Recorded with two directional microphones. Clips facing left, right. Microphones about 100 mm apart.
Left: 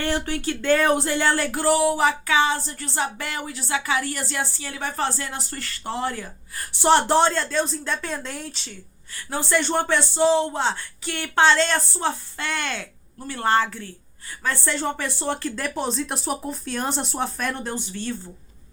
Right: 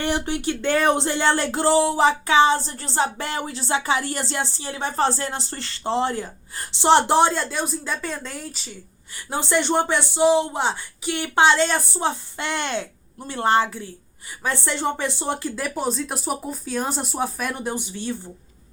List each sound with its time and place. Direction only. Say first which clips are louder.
0.0 s speech: right 1 dB; 20° right (ahead or behind)
8.0 s speech: even; centre (ahead or behind)
9.1 s speech: right 1 dB; 20° right (ahead or behind)